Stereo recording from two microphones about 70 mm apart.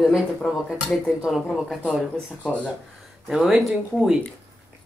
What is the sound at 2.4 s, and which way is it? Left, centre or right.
Speech, left.